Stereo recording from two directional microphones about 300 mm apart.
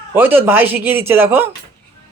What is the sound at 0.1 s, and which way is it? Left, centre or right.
Speech, centre.